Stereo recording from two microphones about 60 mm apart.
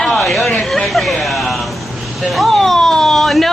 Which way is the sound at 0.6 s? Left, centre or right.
Centre.